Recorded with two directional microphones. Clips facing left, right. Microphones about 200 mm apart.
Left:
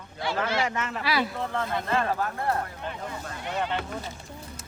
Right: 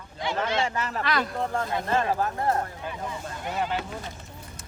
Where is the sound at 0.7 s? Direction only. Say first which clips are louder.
Right 1 dB; 35° right (ahead or behind).